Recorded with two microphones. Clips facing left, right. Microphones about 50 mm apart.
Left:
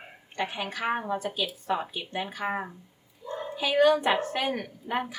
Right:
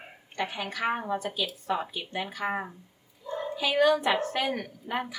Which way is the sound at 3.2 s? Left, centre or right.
Centre.